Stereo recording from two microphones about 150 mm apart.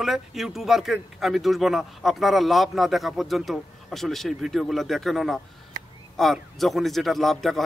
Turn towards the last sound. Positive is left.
turn(degrees=0)  # may be behind; listen again after turning